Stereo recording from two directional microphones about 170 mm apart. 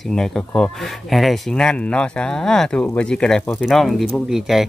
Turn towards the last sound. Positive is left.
turn(degrees=0)  # may be behind; listen again after turning